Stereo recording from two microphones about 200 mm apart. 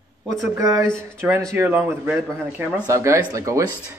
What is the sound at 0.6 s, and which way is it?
A man's voice, 15° right (ahead or behind).